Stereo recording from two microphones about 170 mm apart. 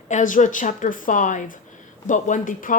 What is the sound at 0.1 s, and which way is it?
Speech, 50° left (ahead or behind).